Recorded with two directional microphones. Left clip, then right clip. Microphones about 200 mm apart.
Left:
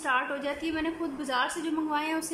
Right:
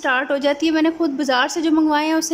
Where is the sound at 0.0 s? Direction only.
40° right (ahead or behind).